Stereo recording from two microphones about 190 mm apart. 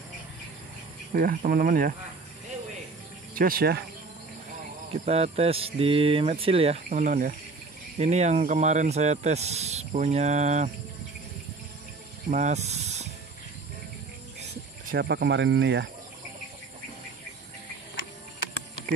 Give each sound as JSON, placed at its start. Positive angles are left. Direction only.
{"t": 1.1, "sound": "speech", "side_deg": -45}
{"t": 3.3, "sound": "speech", "side_deg": -50}
{"t": 4.9, "sound": "speech", "side_deg": -35}
{"t": 12.3, "sound": "speech", "side_deg": -40}
{"t": 15.0, "sound": "speech", "side_deg": -60}